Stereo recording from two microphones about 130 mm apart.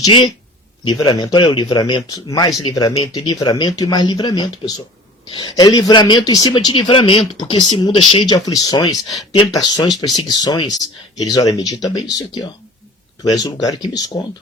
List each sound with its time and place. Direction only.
0.9 s speech: 35° left (ahead or behind)